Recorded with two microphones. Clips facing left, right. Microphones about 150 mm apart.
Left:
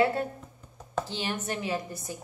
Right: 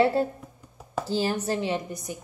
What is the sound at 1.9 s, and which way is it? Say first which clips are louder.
Speech: right 3 dB; 15° right (ahead or behind).